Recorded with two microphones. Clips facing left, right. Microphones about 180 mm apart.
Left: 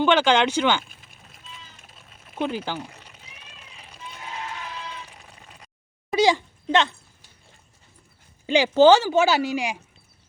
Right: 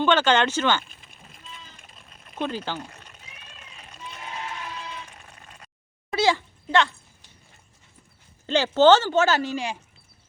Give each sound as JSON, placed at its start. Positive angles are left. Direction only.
{"t": 0.0, "sound": "speech", "side_deg": 10}
{"t": 0.9, "sound": "sheep", "side_deg": 0}
{"t": 1.8, "sound": "a sound", "side_deg": 0}
{"t": 5.0, "sound": "bleat", "side_deg": 10}
{"t": 6.1, "sound": "a sound", "side_deg": 15}
{"t": 8.4, "sound": "speech", "side_deg": 10}